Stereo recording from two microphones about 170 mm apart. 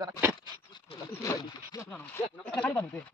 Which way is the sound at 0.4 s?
25° left (ahead or behind).